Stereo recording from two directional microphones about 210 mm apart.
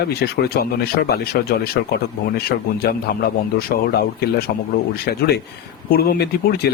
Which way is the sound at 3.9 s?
45° left (ahead or behind).